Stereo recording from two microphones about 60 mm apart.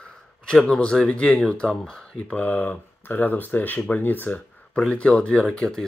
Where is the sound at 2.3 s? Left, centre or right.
Left.